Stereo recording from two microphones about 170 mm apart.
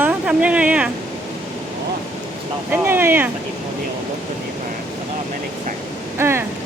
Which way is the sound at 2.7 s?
15° right (ahead or behind).